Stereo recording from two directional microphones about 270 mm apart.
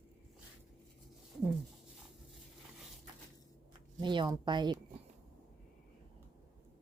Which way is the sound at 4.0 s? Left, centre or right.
Centre.